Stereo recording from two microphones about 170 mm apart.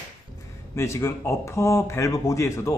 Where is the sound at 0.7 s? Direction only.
15° left (ahead or behind).